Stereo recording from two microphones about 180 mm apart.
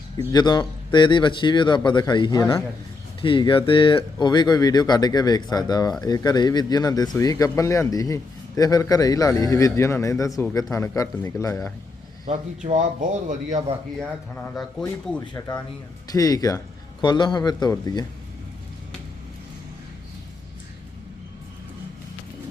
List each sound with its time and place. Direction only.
0.3 s speech: 20° left (ahead or behind)
12.6 s speech: 45° right (ahead or behind)
14.3 s a man's voice: 5° left (ahead or behind)
15.2 s speech: 20° left (ahead or behind)